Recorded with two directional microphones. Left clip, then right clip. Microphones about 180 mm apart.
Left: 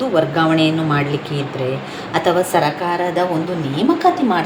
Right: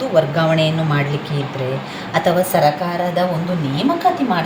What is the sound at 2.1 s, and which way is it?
A woman's voice, 35° left (ahead or behind).